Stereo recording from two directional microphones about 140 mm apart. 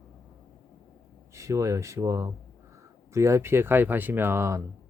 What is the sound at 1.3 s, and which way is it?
Speech, 20° right (ahead or behind).